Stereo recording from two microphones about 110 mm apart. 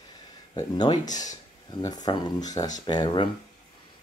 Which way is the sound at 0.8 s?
40° left (ahead or behind).